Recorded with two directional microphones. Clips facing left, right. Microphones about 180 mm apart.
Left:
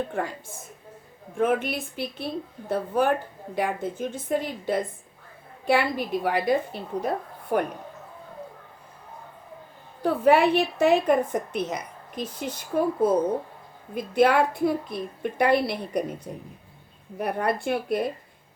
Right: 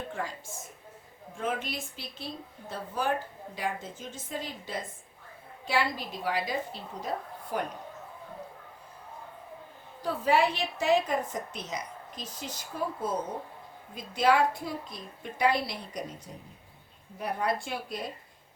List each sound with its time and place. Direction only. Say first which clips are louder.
0.1 s speech: left 6 dB; 60° left (ahead or behind)
10.0 s speech: left 7 dB; 60° left (ahead or behind)
17.2 s speech: left 5 dB; 60° left (ahead or behind)